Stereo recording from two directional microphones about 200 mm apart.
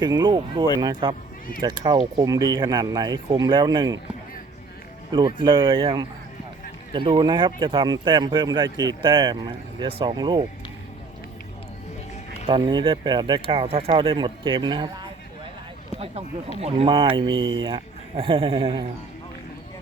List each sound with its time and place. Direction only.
0.0 s speech: 20° right (ahead or behind)
5.1 s speech: 20° right (ahead or behind)
12.5 s speech: 25° right (ahead or behind)
16.6 s speech: 30° right (ahead or behind)